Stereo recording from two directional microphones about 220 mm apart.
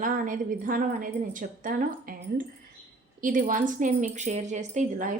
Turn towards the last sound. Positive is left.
turn(degrees=-35)  # may be behind; listen again after turning